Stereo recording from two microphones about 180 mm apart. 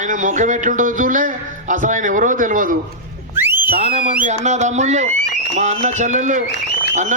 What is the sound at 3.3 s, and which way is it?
Whistling, 10° right (ahead or behind).